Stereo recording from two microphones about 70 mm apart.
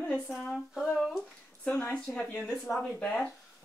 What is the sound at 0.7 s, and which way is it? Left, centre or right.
Speech, centre.